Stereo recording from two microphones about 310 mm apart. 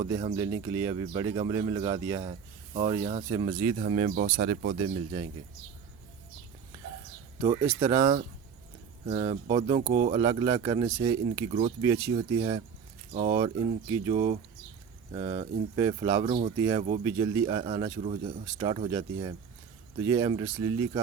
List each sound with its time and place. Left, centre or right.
0.0 s speech: centre
7.7 s speech: centre